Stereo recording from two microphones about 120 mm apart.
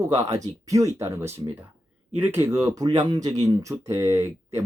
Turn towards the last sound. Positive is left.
turn(degrees=-20)  # may be behind; listen again after turning